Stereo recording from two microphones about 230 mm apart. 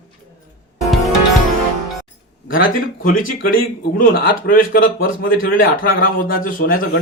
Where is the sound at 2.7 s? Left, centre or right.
Left.